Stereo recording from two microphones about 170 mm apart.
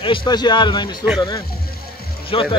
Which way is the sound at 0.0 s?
30° left (ahead or behind).